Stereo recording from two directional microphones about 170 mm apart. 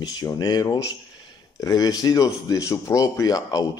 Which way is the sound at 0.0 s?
20° left (ahead or behind).